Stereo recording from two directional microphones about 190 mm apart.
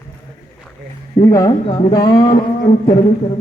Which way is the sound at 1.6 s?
30° left (ahead or behind).